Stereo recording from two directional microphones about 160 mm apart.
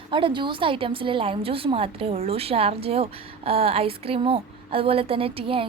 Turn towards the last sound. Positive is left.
turn(degrees=-35)  # may be behind; listen again after turning